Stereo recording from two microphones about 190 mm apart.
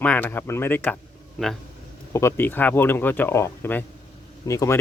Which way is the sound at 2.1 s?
15° left (ahead or behind).